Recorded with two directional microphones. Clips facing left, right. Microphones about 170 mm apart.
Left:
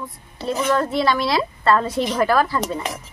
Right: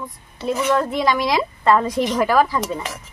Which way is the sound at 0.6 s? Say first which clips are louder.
Even; 15° right (ahead or behind).